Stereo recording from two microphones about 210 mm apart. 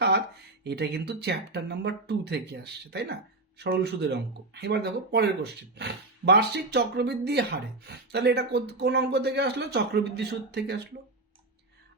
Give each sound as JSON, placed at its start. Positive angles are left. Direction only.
{"t": 0.6, "sound": "speech", "side_deg": -50}